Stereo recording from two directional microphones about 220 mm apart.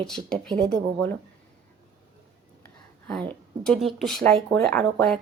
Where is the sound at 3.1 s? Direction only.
5° left (ahead or behind).